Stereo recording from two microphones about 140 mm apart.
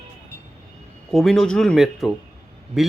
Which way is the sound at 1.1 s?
Centre (ahead or behind).